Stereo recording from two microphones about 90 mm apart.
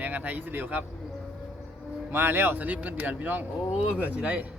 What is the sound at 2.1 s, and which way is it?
Speech, 25° right (ahead or behind).